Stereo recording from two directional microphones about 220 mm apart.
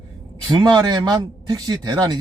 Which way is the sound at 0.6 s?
15° right (ahead or behind).